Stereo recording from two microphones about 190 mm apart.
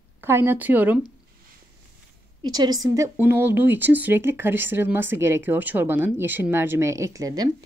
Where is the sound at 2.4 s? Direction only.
20° right (ahead or behind).